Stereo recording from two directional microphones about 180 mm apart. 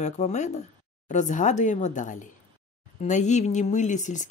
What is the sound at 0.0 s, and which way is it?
Speech, 40° left (ahead or behind).